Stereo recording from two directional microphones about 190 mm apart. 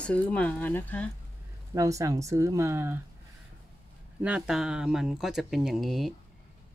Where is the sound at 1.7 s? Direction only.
15° right (ahead or behind).